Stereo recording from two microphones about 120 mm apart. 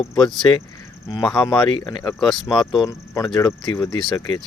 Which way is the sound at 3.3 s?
30° left (ahead or behind).